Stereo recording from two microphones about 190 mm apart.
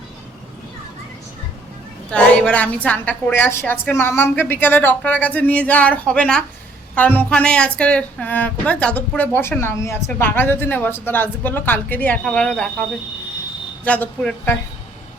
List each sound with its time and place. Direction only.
2.0 s speech: 5° left (ahead or behind)
13.8 s speech: 5° left (ahead or behind)